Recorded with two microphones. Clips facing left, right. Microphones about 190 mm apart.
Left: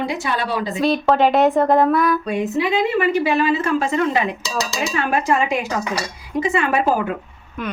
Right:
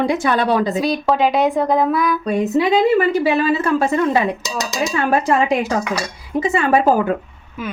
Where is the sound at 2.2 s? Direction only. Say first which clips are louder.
Right 4 dB; 40° right (ahead or behind).